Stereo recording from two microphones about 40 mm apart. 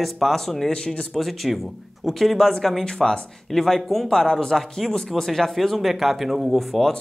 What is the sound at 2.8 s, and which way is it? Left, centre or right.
Speech, centre.